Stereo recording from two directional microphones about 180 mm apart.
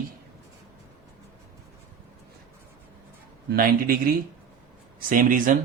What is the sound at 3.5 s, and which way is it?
Speech, 55° right (ahead or behind).